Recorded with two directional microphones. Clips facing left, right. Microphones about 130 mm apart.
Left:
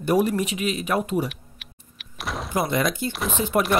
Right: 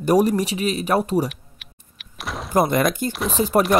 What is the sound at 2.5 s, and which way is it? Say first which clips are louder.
Speech: right 5 dB; 50° right (ahead or behind).